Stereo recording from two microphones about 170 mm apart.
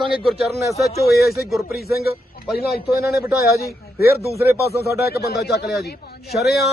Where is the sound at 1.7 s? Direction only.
65° left (ahead or behind).